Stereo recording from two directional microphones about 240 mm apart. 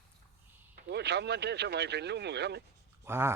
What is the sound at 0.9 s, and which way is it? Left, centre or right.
Speech, right.